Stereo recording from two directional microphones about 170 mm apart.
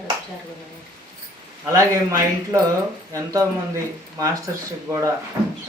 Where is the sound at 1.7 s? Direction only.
20° right (ahead or behind).